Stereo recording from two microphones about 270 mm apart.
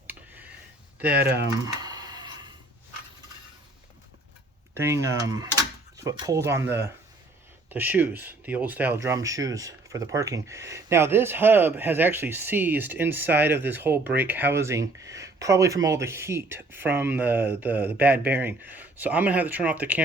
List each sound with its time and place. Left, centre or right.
0.9 s speech: centre
1.5 s a sound: centre
4.7 s speech: centre